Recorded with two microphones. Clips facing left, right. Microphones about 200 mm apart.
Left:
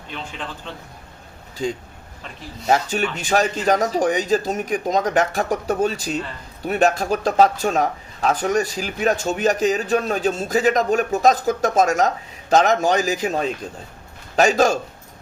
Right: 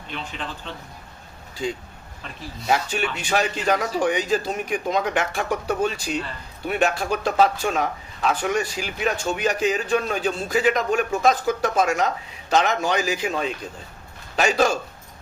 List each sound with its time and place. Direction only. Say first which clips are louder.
1.6 s a man's voice: left 3 dB; 40° left (ahead or behind)